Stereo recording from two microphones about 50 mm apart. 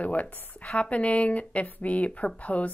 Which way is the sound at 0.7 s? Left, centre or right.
Left.